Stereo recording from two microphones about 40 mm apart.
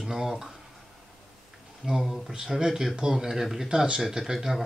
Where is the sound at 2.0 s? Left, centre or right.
Centre.